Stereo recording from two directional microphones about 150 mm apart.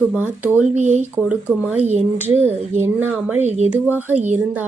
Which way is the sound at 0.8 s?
50° right (ahead or behind).